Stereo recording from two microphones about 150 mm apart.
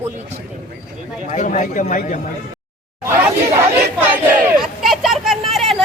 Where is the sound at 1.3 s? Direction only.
55° left (ahead or behind).